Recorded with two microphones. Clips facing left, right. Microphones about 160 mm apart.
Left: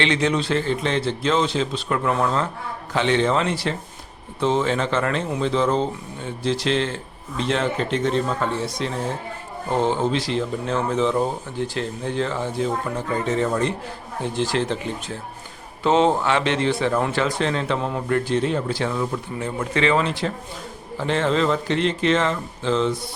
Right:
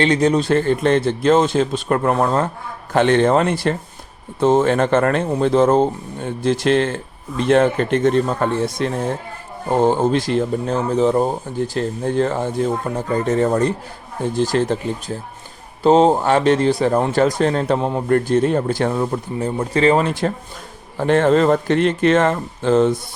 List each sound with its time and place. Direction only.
0.0 s a man's voice: 40° right (ahead or behind)
18.1 s speech: 45° right (ahead or behind)